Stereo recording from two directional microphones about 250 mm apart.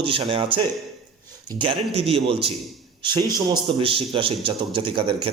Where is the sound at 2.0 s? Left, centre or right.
Right.